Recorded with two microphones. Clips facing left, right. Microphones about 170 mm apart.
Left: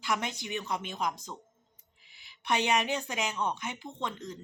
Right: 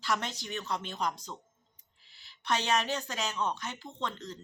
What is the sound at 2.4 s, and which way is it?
Speech, 15° left (ahead or behind).